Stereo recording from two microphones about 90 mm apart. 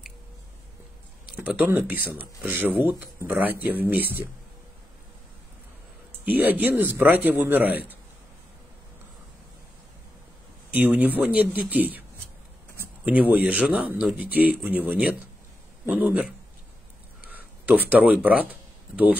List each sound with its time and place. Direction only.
1.3 s a sound: 15° right (ahead or behind)
1.7 s speech: 20° right (ahead or behind)
6.2 s speech: 20° right (ahead or behind)
10.7 s speech: 20° right (ahead or behind)
13.0 s speech: 15° right (ahead or behind)
17.3 s a sound: 20° right (ahead or behind)
18.2 s speech: 15° right (ahead or behind)